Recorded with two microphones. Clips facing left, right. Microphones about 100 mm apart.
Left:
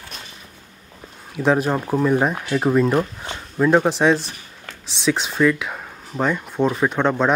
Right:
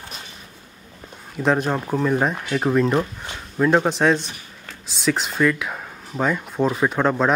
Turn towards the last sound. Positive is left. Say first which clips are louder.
# left 1 dB
turn(degrees=0)  # may be behind; listen again after turning